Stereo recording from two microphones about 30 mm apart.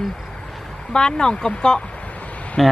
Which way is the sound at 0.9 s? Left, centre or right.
Left.